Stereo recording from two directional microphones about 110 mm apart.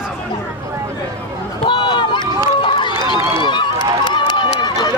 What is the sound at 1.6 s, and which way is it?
Run, 45° left (ahead or behind).